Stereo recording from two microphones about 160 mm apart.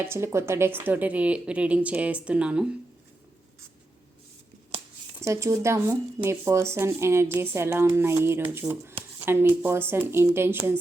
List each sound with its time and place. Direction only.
0.1 s speech: 15° right (ahead or behind)
5.2 s speech: 20° right (ahead or behind)